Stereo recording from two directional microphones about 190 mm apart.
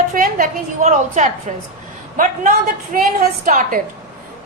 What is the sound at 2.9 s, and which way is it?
Speech, 45° right (ahead or behind).